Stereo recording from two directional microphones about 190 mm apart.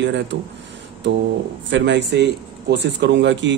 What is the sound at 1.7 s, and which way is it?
Speech, 70° right (ahead or behind).